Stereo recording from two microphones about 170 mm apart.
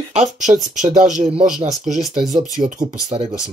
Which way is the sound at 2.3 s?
50° right (ahead or behind).